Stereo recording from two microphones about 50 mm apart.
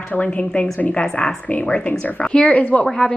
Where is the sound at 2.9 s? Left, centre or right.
Centre.